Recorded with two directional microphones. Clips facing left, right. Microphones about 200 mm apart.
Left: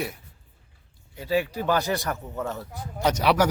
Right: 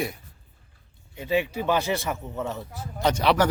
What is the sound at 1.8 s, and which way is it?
A man's voice, centre (ahead or behind).